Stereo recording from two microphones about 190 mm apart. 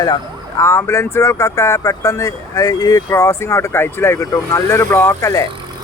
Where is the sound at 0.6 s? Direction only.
15° left (ahead or behind).